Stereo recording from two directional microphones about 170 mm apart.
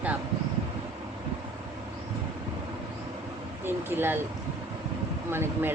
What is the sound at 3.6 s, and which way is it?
Speech, 15° right (ahead or behind).